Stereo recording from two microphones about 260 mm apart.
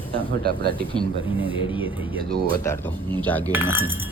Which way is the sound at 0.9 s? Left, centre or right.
Centre.